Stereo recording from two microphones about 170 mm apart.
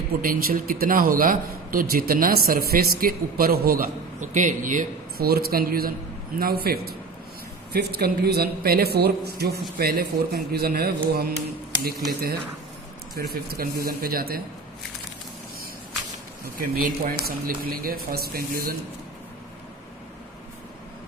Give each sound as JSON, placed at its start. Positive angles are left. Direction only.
{"t": 0.2, "sound": "a man's voice", "side_deg": -55}
{"t": 13.1, "sound": "a man's voice", "side_deg": -65}
{"t": 16.6, "sound": "a man's voice", "side_deg": -55}